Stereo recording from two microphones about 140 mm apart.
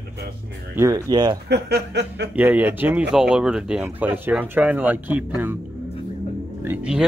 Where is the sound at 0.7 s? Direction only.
20° right (ahead or behind).